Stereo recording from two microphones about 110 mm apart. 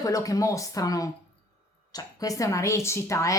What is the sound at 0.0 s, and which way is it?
A woman's voice, 30° left (ahead or behind).